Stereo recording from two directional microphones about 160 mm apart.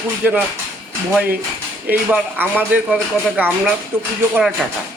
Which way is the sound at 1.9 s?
10° right (ahead or behind).